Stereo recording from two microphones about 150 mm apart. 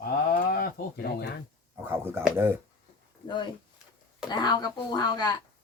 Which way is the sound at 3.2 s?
30° left (ahead or behind).